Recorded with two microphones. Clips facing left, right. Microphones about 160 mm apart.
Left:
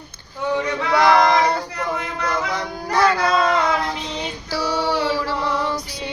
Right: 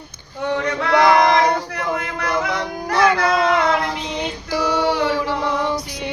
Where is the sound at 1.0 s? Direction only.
15° right (ahead or behind).